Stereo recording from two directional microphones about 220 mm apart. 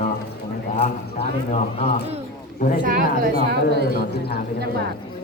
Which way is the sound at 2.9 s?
40° right (ahead or behind).